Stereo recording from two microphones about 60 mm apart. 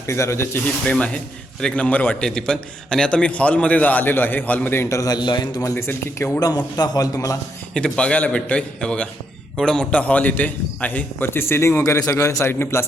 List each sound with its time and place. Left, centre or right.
0.1 s speech: left
0.6 s a man's voice: left
4.9 s a man's voice: left
5.7 s a man's voice: left
6.4 s a man's voice: left
7.7 s a man's voice: centre
11.3 s speech: left
11.8 s a man's voice: left
12.5 s a man's voice: left